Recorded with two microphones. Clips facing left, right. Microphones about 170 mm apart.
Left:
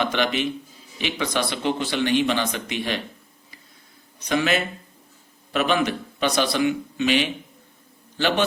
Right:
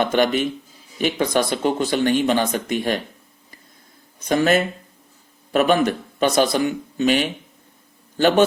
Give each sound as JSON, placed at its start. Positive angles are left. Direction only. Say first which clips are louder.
{"t": 0.0, "sound": "speech", "louder": "right 5 dB", "side_deg": -45}
{"t": 4.2, "sound": "a man's voice", "louder": "right 5 dB", "side_deg": -50}